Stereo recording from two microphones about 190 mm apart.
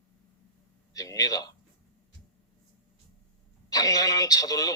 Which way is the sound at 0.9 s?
20° left (ahead or behind).